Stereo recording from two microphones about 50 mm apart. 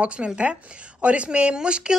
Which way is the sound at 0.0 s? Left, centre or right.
Right.